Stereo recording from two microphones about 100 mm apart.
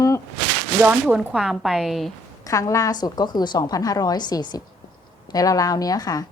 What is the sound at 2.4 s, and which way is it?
A woman's voice, 35° left (ahead or behind).